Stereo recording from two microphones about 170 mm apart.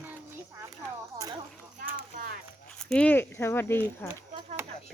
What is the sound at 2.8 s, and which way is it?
Speech, 5° left (ahead or behind).